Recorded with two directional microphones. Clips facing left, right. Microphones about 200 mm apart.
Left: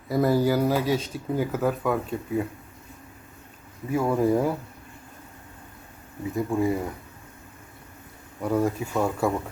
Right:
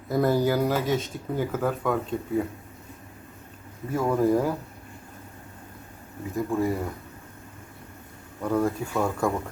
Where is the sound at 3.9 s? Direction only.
10° left (ahead or behind).